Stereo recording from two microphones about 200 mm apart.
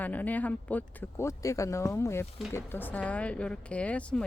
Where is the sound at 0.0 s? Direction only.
10° left (ahead or behind).